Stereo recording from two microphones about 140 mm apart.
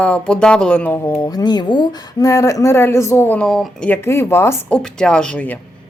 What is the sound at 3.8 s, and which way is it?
Speech, 15° left (ahead or behind).